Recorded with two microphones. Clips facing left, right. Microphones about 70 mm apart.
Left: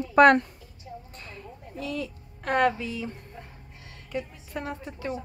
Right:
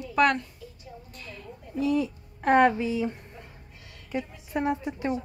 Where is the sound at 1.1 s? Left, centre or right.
Left.